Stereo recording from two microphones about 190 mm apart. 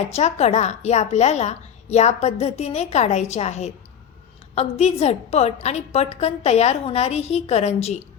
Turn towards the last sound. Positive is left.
turn(degrees=35)  # may be behind; listen again after turning